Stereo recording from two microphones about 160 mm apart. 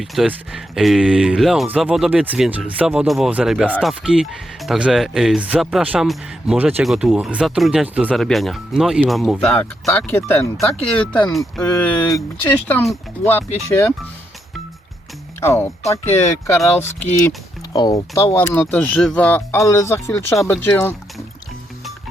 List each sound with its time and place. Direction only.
0.0 s speech: 5° right (ahead or behind); by 13.9 s 15° left (ahead or behind)
15.4 s speech: 15° left (ahead or behind)
18.3 s speech: 15° left (ahead or behind)